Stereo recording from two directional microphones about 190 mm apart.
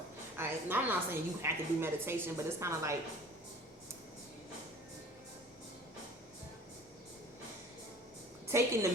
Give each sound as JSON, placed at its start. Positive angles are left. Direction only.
{"t": 0.3, "sound": "a woman's voice", "side_deg": -10}
{"t": 8.4, "sound": "a woman's voice", "side_deg": -15}